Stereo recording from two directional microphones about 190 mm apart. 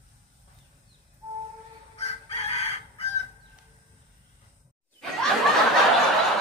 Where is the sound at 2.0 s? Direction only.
35° left (ahead or behind).